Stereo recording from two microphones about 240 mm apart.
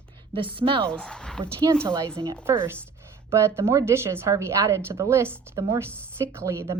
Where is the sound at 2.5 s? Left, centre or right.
Centre.